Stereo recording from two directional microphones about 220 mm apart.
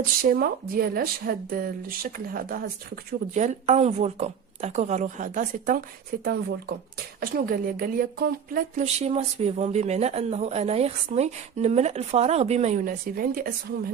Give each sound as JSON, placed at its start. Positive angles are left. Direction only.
{"t": 0.2, "sound": "speech", "side_deg": -40}
{"t": 7.2, "sound": "speech", "side_deg": -40}